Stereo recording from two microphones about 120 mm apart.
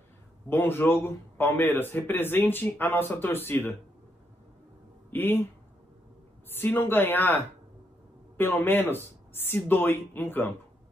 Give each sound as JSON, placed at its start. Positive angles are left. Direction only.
{"t": 0.5, "sound": "a man's voice", "side_deg": 20}
{"t": 5.1, "sound": "speech", "side_deg": 20}
{"t": 6.5, "sound": "a man's voice", "side_deg": 20}